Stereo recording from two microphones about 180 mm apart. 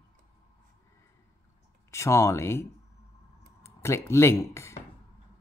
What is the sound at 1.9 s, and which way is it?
Speech, 15° left (ahead or behind).